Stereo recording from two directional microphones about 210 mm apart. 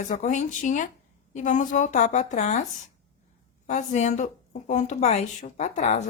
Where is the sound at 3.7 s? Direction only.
35° left (ahead or behind).